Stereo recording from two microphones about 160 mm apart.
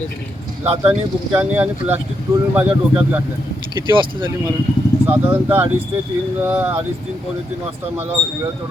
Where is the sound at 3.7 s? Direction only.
30° right (ahead or behind).